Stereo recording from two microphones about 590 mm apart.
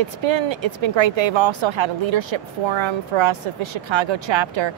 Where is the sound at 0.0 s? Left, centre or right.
Right.